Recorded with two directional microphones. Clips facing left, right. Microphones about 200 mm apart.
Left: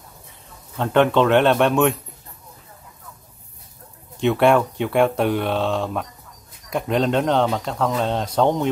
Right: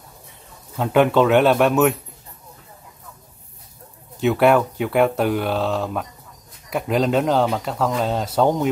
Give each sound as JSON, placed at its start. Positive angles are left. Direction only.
{"t": 0.7, "sound": "speech", "side_deg": -5}
{"t": 4.2, "sound": "speech", "side_deg": -5}